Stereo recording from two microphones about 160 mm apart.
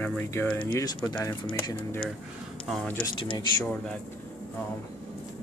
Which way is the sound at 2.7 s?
5° left (ahead or behind).